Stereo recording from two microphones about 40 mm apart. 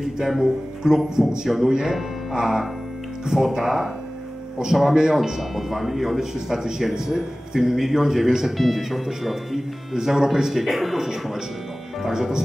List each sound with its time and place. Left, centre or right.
0.0 s speech: centre
4.9 s speech: centre
12.0 s speech: centre